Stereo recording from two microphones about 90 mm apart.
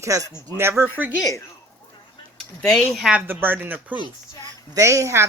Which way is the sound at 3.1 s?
20° right (ahead or behind).